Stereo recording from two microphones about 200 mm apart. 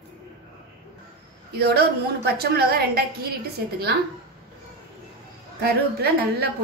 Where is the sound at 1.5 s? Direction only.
50° right (ahead or behind).